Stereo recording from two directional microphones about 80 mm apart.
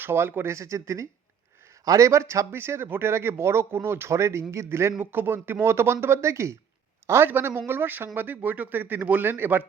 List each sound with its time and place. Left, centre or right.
0.0 s a man's voice: right